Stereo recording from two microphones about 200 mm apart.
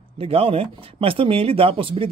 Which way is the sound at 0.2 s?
30° right (ahead or behind).